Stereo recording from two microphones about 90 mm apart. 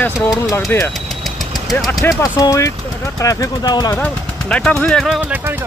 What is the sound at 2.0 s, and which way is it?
Speech, 40° left (ahead or behind).